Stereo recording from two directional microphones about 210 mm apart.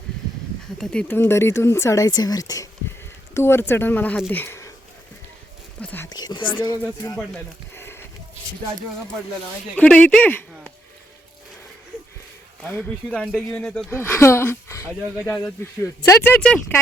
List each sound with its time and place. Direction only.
0.8 s speech: 5° left (ahead or behind)
5.8 s a sound: 10° left (ahead or behind)
6.1 s speech: 20° left (ahead or behind)
7.8 s sheep: 10° left (ahead or behind)
9.7 s a man's voice: 5° left (ahead or behind)
12.6 s speech: 5° left (ahead or behind)